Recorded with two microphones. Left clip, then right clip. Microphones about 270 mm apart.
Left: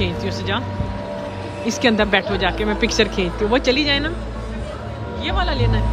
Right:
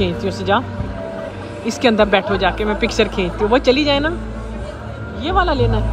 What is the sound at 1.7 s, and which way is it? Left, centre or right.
Speech, centre.